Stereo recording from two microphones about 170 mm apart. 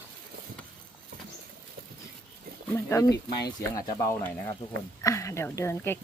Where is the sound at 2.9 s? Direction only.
20° left (ahead or behind).